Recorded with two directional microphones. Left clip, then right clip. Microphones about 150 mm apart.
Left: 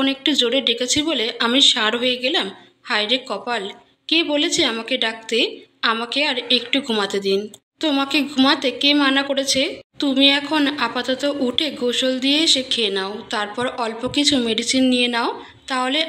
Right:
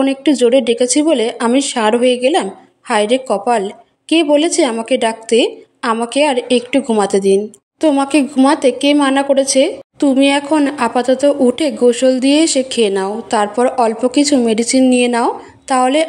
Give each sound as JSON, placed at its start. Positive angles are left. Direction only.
{"t": 0.2, "sound": "speech", "side_deg": -45}